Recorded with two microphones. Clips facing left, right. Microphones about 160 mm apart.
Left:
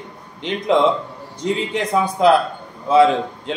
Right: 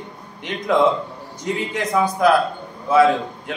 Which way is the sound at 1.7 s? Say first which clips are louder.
Left 1 dB; 25° left (ahead or behind).